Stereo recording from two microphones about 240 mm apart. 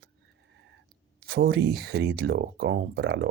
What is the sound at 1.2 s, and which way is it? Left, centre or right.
Speech, right.